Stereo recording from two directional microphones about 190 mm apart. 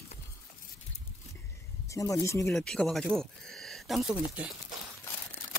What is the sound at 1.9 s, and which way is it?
Speech, 15° left (ahead or behind).